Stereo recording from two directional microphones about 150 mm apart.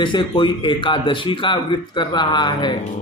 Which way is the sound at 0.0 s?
30° left (ahead or behind).